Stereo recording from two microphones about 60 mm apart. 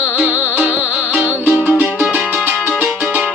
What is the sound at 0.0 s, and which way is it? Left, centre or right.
Music, right.